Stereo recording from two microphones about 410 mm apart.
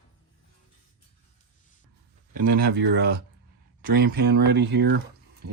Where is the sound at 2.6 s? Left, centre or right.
Right.